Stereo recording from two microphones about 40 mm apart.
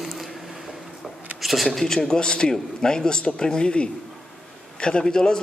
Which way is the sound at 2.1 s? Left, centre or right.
Centre.